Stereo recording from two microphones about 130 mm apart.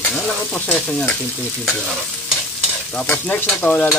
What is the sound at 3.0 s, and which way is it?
Stir, 15° left (ahead or behind).